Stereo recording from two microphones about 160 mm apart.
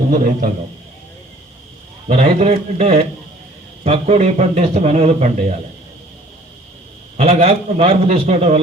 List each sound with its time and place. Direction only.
0.1 s a man's voice: 60° right (ahead or behind)
2.0 s a man's voice: 40° right (ahead or behind)
7.2 s a man's voice: 40° right (ahead or behind)